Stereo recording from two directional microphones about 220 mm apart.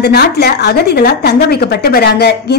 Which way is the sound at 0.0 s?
45° left (ahead or behind).